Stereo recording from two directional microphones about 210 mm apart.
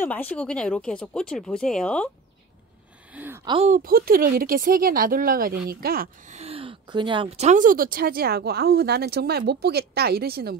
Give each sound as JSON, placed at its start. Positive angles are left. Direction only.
{"t": 0.0, "sound": "speech", "side_deg": 10}
{"t": 3.1, "sound": "a sound", "side_deg": -10}
{"t": 3.4, "sound": "speech", "side_deg": -30}